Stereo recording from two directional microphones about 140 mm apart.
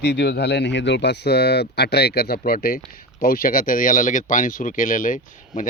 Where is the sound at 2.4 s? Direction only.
90° left.